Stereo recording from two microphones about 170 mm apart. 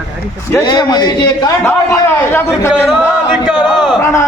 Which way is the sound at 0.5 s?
20° left (ahead or behind).